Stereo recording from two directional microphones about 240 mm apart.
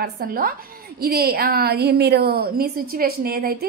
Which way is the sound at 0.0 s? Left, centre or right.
Right.